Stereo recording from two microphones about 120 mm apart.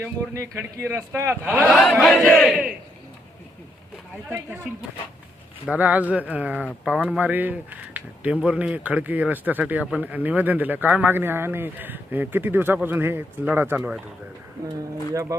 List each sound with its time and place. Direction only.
0.0 s speech: 20° right (ahead or behind)
1.7 s a sound: centre (ahead or behind)
2.5 s speech: 5° right (ahead or behind)
5.6 s speech: 15° right (ahead or behind)
15.1 s speech: 25° right (ahead or behind)